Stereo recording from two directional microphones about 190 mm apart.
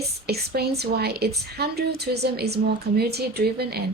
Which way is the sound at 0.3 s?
55° right (ahead or behind).